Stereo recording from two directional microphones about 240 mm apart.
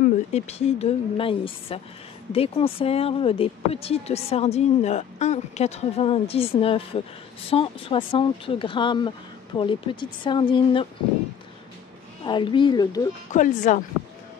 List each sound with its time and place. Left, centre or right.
0.0 s speech: left
12.3 s speech: centre
13.3 s speech: left